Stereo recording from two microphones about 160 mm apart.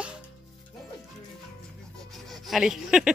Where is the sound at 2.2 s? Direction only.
Centre (ahead or behind).